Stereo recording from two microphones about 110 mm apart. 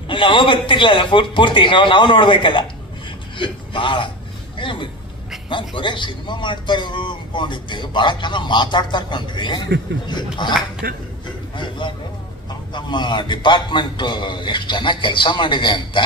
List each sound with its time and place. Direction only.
0.1 s a man's voice: 45° left (ahead or behind)
11.5 s speech: 45° left (ahead or behind)